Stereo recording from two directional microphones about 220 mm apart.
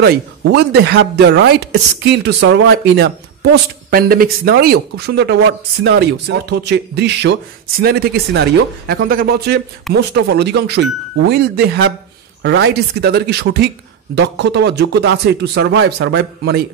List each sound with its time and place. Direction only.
0.0 s speech: 50° right (ahead or behind)